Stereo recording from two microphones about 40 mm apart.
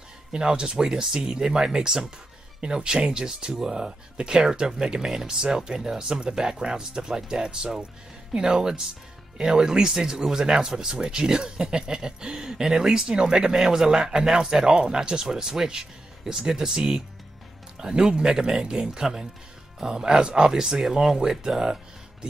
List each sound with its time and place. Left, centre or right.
0.3 s speech: right